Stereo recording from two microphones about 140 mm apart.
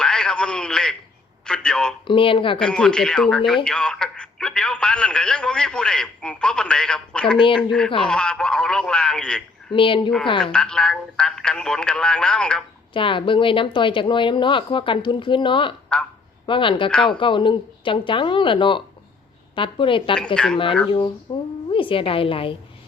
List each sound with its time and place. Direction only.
0.0 s a sound: 5° left (ahead or behind)
1.5 s speech: 5° left (ahead or behind)
2.0 s speech: 40° left (ahead or behind)
2.6 s speech: 5° left (ahead or behind)
7.3 s speech: 35° left (ahead or behind)
8.0 s speech: 5° left (ahead or behind)
9.7 s speech: 35° left (ahead or behind)
10.4 s speech: 5° left (ahead or behind)
12.9 s speech: 35° left (ahead or behind)
15.9 s speech: 5° left (ahead or behind)
16.5 s speech: 35° left (ahead or behind)
20.1 s speech: 5° left (ahead or behind)
20.8 s a woman's voice: 30° left (ahead or behind)